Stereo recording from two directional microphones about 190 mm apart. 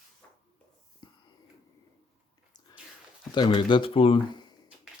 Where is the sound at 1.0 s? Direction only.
25° left (ahead or behind).